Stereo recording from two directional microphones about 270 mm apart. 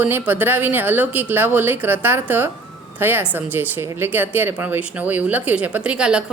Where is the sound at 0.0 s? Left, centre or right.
Centre.